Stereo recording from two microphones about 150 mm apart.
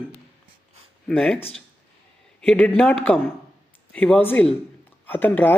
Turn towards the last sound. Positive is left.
turn(degrees=10)  # may be behind; listen again after turning